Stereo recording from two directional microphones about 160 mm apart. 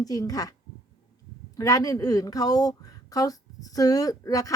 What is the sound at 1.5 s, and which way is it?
A woman's voice, 20° left (ahead or behind).